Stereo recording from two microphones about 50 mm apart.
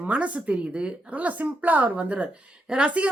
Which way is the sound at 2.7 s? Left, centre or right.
Centre.